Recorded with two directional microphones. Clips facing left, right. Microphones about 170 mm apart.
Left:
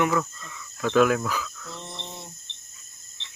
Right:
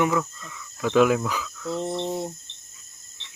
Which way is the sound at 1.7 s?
40° right (ahead or behind).